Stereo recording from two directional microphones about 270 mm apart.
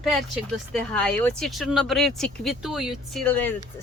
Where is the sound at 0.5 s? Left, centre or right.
Centre.